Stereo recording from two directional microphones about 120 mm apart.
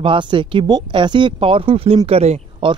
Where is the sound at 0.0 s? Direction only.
45° right (ahead or behind).